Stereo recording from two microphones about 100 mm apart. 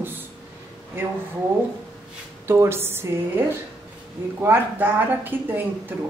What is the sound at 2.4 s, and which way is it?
A woman's voice, 25° right (ahead or behind).